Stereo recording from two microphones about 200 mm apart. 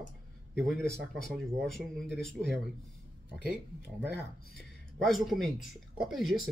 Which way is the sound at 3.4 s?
55° left (ahead or behind).